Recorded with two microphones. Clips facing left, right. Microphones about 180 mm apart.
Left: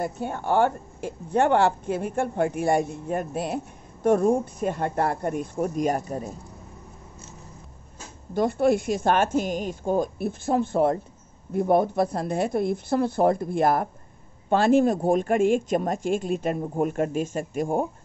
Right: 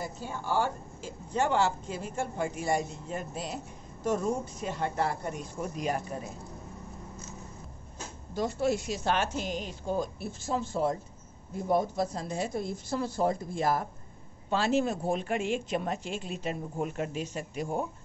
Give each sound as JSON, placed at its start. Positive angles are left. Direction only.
{"t": 0.0, "sound": "a woman's voice", "side_deg": 60}
{"t": 8.4, "sound": "a woman's voice", "side_deg": 55}